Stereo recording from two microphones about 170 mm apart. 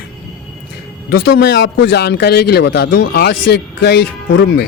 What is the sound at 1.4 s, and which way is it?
A man's voice, 90° left.